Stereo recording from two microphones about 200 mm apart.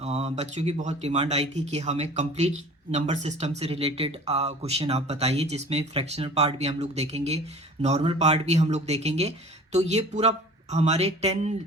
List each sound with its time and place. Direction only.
0.0 s speech: 35° right (ahead or behind)